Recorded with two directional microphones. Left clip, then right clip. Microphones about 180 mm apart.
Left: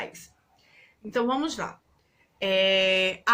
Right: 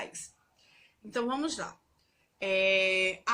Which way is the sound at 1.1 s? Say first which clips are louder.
Left 6 dB; 45° left (ahead or behind).